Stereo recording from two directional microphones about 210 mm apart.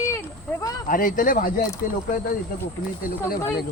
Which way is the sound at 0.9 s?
40° left (ahead or behind).